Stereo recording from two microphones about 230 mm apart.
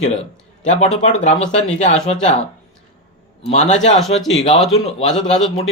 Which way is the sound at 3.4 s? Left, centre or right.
Left.